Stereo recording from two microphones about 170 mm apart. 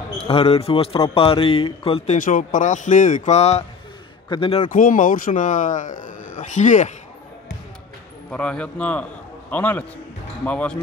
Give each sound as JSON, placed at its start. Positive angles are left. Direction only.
{"t": 0.2, "sound": "a man's voice", "side_deg": 35}
{"t": 2.1, "sound": "a man's voice", "side_deg": 50}
{"t": 4.6, "sound": "a man's voice", "side_deg": 50}
{"t": 8.3, "sound": "speech", "side_deg": 5}